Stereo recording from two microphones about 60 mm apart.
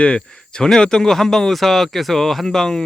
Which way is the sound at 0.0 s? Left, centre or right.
Centre.